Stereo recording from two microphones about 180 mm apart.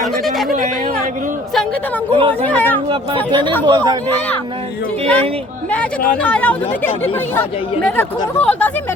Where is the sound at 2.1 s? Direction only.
35° right (ahead or behind).